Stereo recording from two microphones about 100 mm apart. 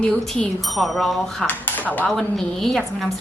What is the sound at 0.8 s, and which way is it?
Speech, centre (ahead or behind).